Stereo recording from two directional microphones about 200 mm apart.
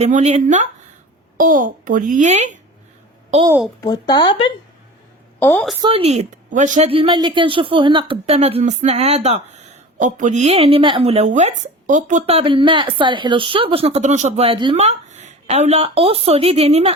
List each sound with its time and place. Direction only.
0.0 s a woman's voice: 35° right (ahead or behind)
3.8 s speech: 20° left (ahead or behind)
5.4 s a woman's voice: 10° left (ahead or behind)
5.8 s a woman's voice: 30° right (ahead or behind)